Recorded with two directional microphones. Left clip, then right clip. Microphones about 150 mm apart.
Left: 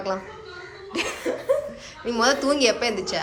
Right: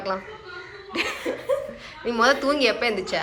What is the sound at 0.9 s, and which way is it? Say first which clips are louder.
Laughter: right 1 dB; 20° left (ahead or behind).